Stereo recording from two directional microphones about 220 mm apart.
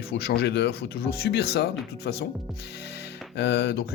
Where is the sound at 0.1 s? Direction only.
50° left (ahead or behind).